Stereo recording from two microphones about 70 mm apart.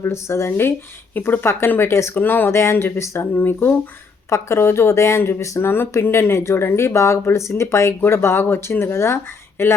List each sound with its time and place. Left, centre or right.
0.0 s speech: left
2.5 s speech: left
3.3 s speech: left
5.4 s speech: left